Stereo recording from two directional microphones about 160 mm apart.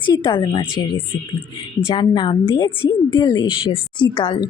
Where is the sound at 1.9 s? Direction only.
30° left (ahead or behind).